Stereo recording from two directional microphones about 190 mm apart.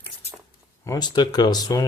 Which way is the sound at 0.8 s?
20° left (ahead or behind).